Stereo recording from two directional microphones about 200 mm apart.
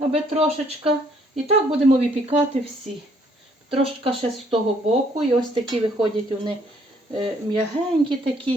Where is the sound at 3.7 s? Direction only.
25° right (ahead or behind).